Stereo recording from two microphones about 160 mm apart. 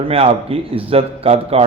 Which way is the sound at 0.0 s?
40° right (ahead or behind).